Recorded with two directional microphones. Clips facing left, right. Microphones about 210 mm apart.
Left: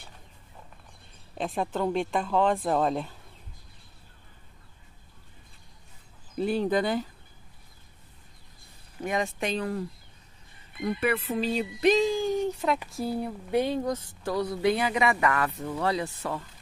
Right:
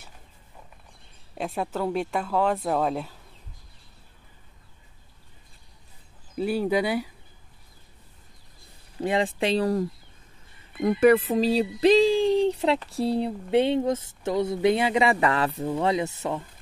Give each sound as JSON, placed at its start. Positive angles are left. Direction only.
{"t": 1.4, "sound": "speech", "side_deg": -10}
{"t": 6.3, "sound": "speech", "side_deg": -5}
{"t": 9.0, "sound": "speech", "side_deg": -30}